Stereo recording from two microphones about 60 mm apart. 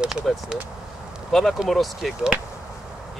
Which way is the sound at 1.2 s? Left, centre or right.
Centre.